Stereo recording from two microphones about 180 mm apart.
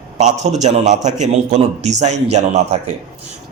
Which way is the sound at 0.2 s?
40° right (ahead or behind).